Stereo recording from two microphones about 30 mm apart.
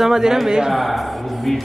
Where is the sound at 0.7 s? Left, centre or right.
Centre.